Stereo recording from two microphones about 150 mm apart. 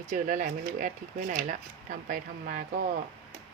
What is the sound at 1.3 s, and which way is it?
Speech, 75° right (ahead or behind).